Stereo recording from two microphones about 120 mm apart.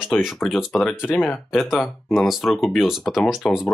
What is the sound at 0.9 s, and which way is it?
Speech, 15° left (ahead or behind).